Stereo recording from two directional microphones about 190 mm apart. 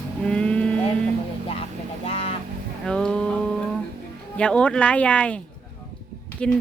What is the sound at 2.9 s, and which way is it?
A woman's voice, 5° left (ahead or behind).